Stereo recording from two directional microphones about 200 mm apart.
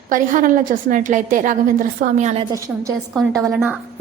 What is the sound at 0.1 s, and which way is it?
A woman's voice, 40° right (ahead or behind).